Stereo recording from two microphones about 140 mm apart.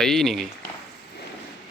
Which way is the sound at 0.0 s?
5° left (ahead or behind).